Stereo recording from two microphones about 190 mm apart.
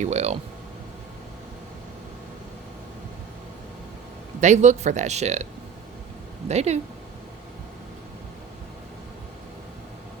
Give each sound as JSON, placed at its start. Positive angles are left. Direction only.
{"t": 0.0, "sound": "speech", "side_deg": -35}
{"t": 4.4, "sound": "speech", "side_deg": -40}
{"t": 6.5, "sound": "speech", "side_deg": -35}